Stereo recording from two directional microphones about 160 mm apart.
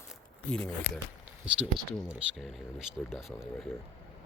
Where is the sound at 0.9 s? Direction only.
90° left.